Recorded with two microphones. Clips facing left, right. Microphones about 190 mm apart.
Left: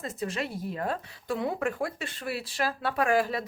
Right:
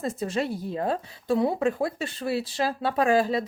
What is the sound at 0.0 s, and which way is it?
A woman's voice, 30° right (ahead or behind).